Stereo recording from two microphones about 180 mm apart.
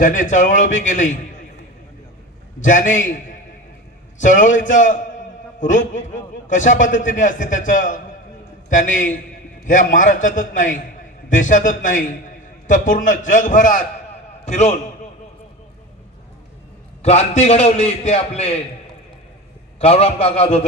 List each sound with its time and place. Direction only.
0.0 s a man's voice: 45° left (ahead or behind)
2.6 s a man's voice: 45° left (ahead or behind)
17.0 s a man's voice: 35° left (ahead or behind)
19.8 s a man's voice: 35° left (ahead or behind)